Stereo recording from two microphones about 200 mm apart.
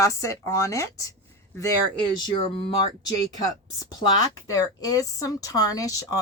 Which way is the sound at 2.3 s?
25° left (ahead or behind).